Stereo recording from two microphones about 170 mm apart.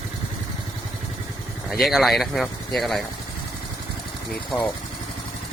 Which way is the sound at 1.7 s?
Centre (ahead or behind).